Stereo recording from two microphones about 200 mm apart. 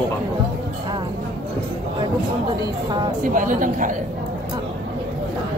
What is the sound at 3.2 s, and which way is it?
Speech, 40° right (ahead or behind).